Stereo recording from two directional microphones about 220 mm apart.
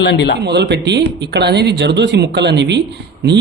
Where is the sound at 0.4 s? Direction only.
50° right (ahead or behind).